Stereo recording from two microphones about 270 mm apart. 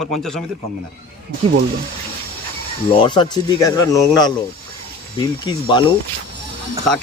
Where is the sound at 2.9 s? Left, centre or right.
Centre.